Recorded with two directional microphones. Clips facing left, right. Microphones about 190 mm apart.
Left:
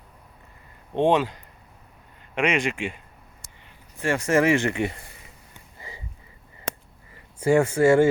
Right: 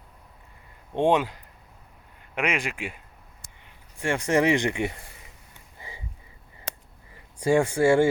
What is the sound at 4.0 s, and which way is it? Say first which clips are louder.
Speech: left 2 dB; 15° right (ahead or behind).